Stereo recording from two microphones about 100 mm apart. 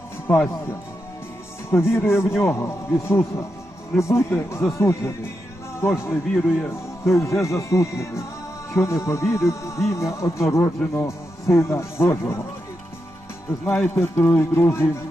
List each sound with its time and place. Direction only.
0.3 s speech: 25° left (ahead or behind)
13.7 s speech: 20° left (ahead or behind)